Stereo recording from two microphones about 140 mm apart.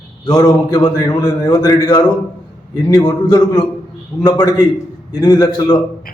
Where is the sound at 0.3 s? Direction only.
25° left (ahead or behind).